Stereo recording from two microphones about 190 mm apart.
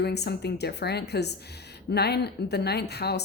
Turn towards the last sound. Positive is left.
turn(degrees=60)  # may be behind; listen again after turning